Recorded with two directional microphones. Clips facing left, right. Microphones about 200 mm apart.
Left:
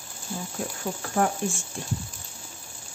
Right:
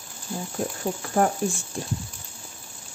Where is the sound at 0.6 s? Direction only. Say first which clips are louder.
Right 5 dB; 40° right (ahead or behind).